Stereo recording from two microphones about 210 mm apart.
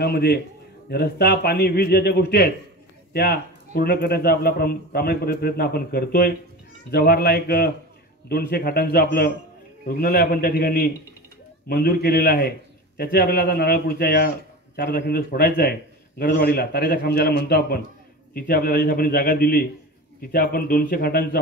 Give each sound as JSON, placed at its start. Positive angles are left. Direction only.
{"t": 0.0, "sound": "speech", "side_deg": 50}